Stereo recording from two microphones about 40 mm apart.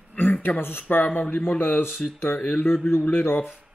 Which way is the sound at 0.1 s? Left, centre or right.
Left.